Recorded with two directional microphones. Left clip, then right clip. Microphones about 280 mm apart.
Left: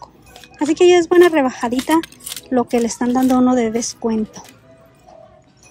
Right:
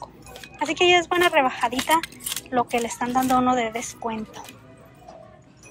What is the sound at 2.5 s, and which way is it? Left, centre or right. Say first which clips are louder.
Speech: left 6 dB; left.